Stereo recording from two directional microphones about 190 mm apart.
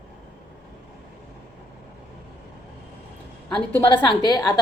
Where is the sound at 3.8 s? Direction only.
25° left (ahead or behind).